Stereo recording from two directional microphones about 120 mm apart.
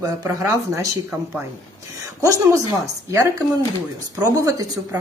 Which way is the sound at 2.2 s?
30° right (ahead or behind).